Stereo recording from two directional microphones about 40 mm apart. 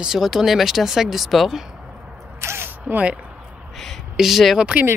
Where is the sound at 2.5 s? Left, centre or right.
Right.